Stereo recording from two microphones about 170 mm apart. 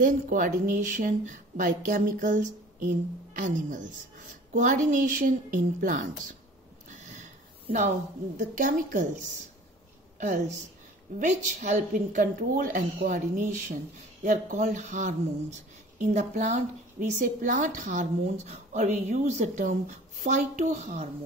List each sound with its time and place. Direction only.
0.0 s speech: 50° right (ahead or behind)
6.9 s a sound: 45° right (ahead or behind)
8.4 s a woman's voice: 50° right (ahead or behind)